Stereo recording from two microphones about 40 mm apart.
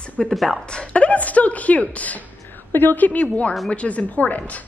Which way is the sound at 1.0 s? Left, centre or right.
Left.